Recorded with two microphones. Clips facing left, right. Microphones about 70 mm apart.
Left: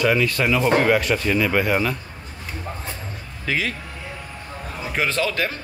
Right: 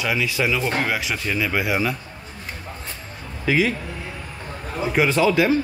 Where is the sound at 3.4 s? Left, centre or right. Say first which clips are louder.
Right 5 dB; centre.